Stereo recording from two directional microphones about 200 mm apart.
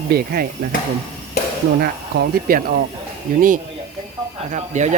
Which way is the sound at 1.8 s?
50° right (ahead or behind).